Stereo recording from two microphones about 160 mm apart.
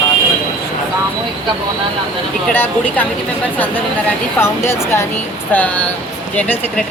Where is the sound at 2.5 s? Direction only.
10° left (ahead or behind).